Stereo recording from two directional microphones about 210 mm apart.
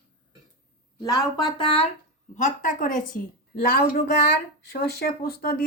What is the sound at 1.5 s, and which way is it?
Speech, 25° left (ahead or behind).